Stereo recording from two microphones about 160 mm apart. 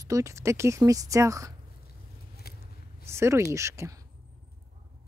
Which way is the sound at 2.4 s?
75° left (ahead or behind).